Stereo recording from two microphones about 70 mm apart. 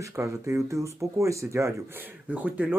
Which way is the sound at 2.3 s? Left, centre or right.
Right.